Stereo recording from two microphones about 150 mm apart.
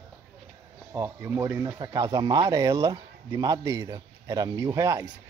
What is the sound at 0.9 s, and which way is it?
Speech, 20° right (ahead or behind).